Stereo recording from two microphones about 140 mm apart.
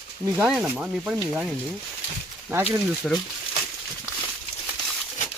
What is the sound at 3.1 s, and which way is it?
Speech, centre (ahead or behind).